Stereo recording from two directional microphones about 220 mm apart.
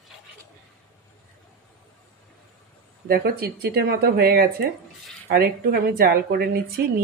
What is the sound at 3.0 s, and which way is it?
A woman's voice, 45° right (ahead or behind).